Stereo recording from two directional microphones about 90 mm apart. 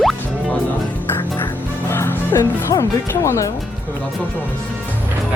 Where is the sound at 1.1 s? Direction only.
25° left (ahead or behind).